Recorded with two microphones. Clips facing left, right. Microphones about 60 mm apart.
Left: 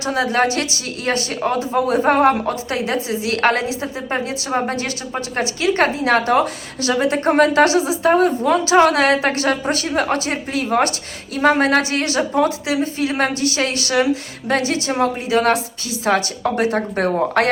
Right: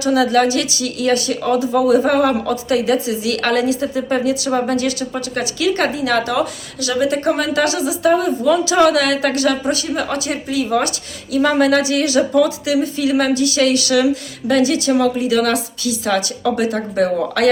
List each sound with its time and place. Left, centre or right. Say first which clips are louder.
0.0 s speech: right 4 dB; left